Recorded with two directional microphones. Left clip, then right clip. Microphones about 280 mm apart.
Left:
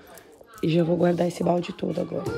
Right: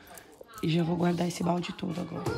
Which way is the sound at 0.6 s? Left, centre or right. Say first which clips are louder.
Left 8 dB; centre.